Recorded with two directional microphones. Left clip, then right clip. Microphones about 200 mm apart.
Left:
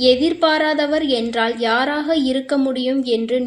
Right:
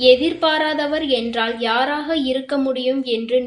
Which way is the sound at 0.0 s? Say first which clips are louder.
Right 1 dB; 45° left (ahead or behind).